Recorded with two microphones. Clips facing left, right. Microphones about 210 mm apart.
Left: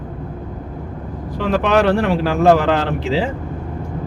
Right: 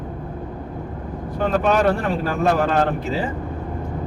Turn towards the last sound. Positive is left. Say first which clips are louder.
# left 3 dB
turn(degrees=90)